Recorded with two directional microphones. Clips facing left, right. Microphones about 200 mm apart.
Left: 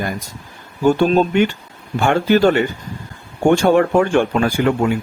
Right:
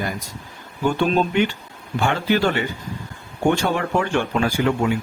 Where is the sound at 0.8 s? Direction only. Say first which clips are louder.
Left 6 dB; 40° left (ahead or behind).